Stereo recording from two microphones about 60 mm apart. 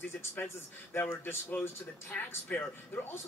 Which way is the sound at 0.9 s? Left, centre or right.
Left.